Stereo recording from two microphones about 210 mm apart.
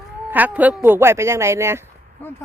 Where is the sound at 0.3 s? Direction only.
10° right (ahead or behind).